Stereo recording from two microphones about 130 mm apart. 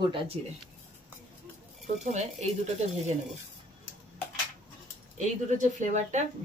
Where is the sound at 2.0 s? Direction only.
60° right (ahead or behind).